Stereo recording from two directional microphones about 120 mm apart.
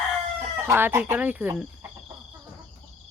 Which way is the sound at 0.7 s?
20° right (ahead or behind).